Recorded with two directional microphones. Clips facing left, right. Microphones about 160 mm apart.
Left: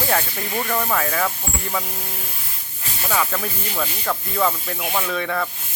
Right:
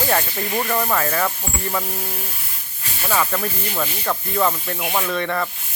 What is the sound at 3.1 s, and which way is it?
Speech, 5° right (ahead or behind).